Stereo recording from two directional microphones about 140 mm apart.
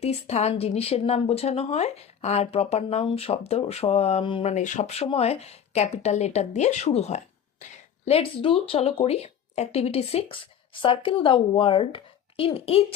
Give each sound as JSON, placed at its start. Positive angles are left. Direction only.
{"t": 0.0, "sound": "speech", "side_deg": 50}
{"t": 4.5, "sound": "speech", "side_deg": 65}